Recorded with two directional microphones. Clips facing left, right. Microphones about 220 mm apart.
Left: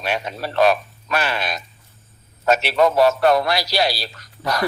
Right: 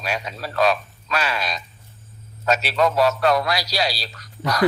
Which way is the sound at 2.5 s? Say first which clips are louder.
Left 3 dB; 25° left (ahead or behind).